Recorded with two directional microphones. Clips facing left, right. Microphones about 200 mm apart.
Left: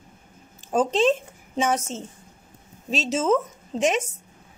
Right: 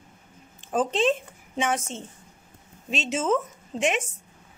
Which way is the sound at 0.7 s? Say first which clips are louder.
Left 3 dB; 40° left (ahead or behind).